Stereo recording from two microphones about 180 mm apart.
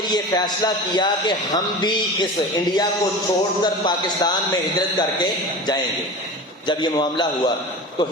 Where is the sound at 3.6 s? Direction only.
25° left (ahead or behind).